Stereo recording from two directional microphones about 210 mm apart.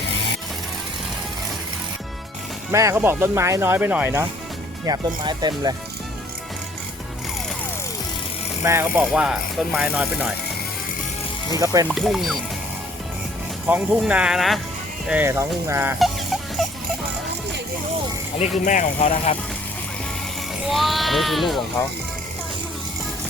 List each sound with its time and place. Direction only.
2.7 s speech: 15° right (ahead or behind)
4.9 s speech: 20° right (ahead or behind)
8.6 s speech: 10° right (ahead or behind)
11.5 s speech: 15° right (ahead or behind)
11.9 s speech: centre (ahead or behind)
13.7 s speech: 10° right (ahead or behind)
16.0 s a sound: centre (ahead or behind)
18.6 s speech: 35° left (ahead or behind)
20.7 s speech: centre (ahead or behind)